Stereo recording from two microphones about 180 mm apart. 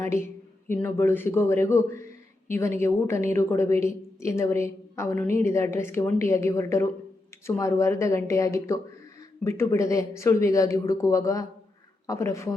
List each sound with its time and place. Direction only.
0.7 s a woman's voice: 15° left (ahead or behind)